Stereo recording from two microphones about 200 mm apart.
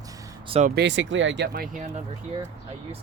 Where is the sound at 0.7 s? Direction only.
65° right (ahead or behind); by 1.8 s 45° right (ahead or behind).